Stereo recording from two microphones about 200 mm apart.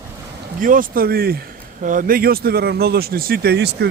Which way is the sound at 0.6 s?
45° right (ahead or behind).